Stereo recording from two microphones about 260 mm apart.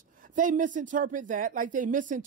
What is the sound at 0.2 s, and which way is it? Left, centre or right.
Speech, right.